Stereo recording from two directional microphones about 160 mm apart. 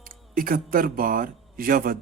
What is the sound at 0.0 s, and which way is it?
Speech, 60° right (ahead or behind).